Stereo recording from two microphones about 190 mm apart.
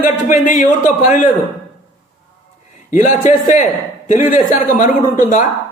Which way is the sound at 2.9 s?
40° left (ahead or behind).